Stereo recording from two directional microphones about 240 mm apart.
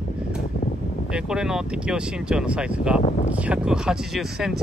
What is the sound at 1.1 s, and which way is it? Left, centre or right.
Speech, centre.